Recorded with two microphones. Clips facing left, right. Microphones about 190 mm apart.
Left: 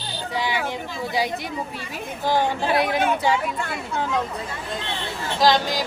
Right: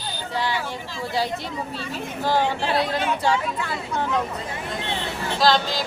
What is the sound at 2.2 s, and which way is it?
Speech, 15° left (ahead or behind).